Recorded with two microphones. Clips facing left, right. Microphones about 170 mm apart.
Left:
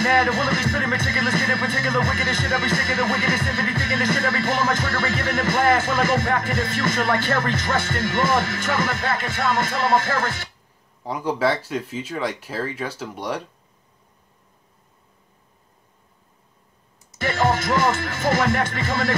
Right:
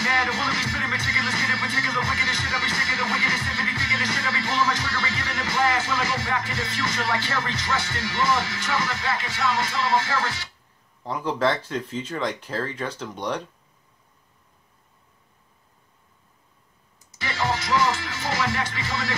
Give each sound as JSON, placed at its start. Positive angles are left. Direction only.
{"t": 0.0, "sound": "speech", "side_deg": 50}
{"t": 11.1, "sound": "speech", "side_deg": 10}
{"t": 17.2, "sound": "speech", "side_deg": 50}